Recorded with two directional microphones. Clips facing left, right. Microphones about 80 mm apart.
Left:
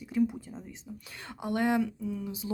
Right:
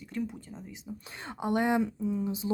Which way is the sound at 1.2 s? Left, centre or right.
Right.